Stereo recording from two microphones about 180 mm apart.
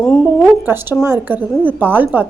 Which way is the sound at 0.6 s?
10° right (ahead or behind).